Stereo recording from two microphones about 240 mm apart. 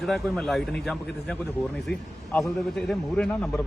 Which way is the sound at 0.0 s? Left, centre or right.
Centre.